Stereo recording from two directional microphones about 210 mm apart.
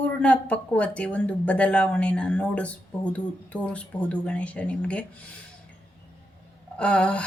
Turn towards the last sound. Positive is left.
turn(degrees=5)  # may be behind; listen again after turning